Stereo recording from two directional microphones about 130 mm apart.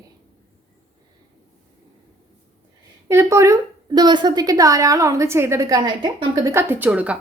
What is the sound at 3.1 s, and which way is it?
A woman's voice, 20° right (ahead or behind).